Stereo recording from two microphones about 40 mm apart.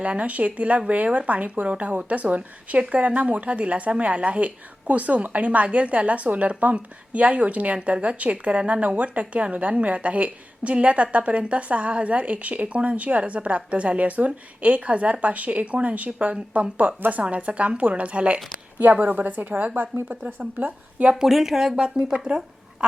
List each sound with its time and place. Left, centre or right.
0.0 s a woman's voice: right
19.0 s a woman's voice: right
21.2 s speech: centre
21.8 s speech: right